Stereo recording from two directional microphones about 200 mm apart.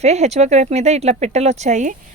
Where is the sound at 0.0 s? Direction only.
35° right (ahead or behind).